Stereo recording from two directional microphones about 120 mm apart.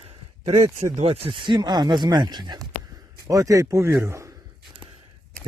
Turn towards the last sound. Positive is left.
turn(degrees=-25)  # may be behind; listen again after turning